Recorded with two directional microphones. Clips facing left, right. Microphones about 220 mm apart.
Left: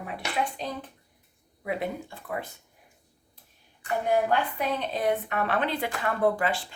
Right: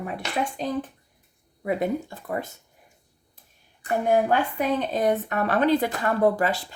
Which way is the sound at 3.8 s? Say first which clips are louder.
Right 4 dB; 45° right (ahead or behind).